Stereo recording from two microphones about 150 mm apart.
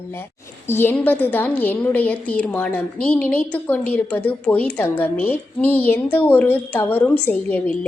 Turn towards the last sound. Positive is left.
turn(degrees=10)  # may be behind; listen again after turning